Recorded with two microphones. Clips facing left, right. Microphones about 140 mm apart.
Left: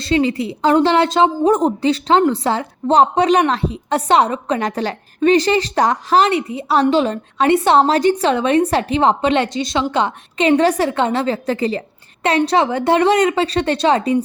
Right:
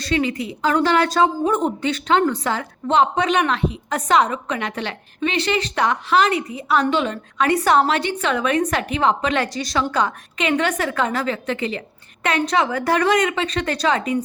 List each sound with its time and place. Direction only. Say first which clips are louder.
0.0 s a woman's voice: left 5 dB; 30° left (ahead or behind)
1.5 s a woman's voice: left 6 dB; 40° left (ahead or behind)